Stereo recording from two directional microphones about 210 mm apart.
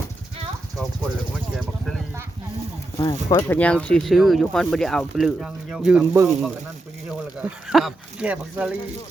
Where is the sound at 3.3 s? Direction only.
10° left (ahead or behind).